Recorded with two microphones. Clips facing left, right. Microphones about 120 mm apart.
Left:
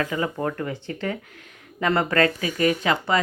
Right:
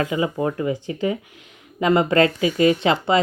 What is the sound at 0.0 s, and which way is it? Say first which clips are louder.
Speech: right 3 dB; 15° right (ahead or behind).